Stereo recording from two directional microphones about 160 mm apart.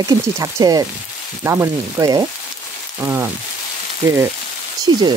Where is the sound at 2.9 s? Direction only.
15° right (ahead or behind).